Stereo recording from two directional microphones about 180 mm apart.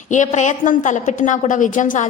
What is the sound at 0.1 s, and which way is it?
A woman's voice, 40° left (ahead or behind).